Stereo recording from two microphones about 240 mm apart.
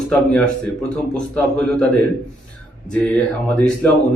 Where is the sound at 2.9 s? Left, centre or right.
Centre.